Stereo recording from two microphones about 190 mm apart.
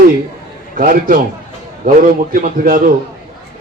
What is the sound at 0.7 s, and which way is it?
Speech, 45° right (ahead or behind).